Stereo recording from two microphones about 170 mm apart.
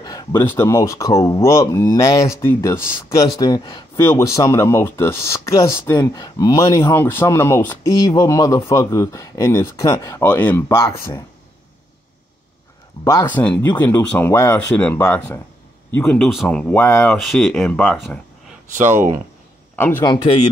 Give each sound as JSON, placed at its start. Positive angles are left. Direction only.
{"t": 0.0, "sound": "speech", "side_deg": 20}
{"t": 13.0, "sound": "speech", "side_deg": 15}
{"t": 18.8, "sound": "speech", "side_deg": -50}
{"t": 20.0, "sound": "speech", "side_deg": 25}